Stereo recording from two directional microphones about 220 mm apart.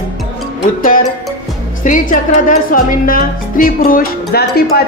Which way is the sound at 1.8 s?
35° left (ahead or behind).